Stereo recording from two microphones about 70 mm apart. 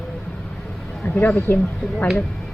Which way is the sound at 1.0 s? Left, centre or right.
Left.